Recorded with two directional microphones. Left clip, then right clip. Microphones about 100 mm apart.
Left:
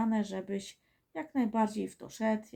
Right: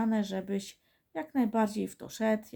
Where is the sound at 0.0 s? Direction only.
35° right (ahead or behind).